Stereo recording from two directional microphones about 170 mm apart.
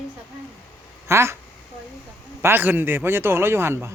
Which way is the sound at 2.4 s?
10° right (ahead or behind).